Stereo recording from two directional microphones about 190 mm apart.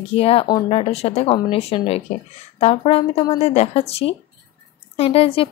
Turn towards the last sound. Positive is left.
turn(degrees=30)  # may be behind; listen again after turning